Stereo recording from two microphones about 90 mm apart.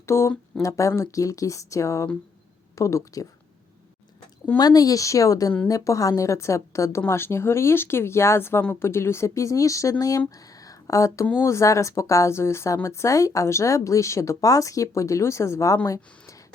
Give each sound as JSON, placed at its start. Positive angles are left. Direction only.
{"t": 0.0, "sound": "speech", "side_deg": 30}
{"t": 4.5, "sound": "speech", "side_deg": 45}